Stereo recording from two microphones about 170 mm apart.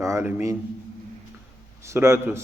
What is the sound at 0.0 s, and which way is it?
Speech, 15° right (ahead or behind).